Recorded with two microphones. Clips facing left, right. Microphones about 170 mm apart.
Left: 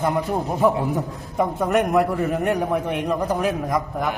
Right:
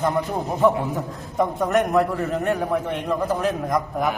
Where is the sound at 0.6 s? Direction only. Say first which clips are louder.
Right 1 dB; 10° left (ahead or behind).